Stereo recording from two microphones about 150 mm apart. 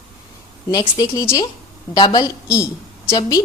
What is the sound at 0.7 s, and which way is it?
A woman's voice, 25° left (ahead or behind).